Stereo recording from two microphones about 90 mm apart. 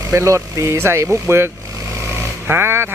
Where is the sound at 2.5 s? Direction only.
25° right (ahead or behind).